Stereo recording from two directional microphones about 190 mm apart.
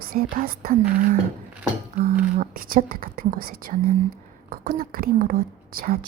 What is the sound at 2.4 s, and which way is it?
Speech, 50° right (ahead or behind).